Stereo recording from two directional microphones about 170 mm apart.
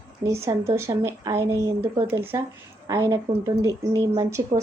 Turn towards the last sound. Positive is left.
turn(degrees=-20)  # may be behind; listen again after turning